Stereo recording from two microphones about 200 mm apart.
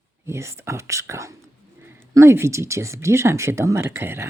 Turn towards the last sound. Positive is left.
turn(degrees=-10)  # may be behind; listen again after turning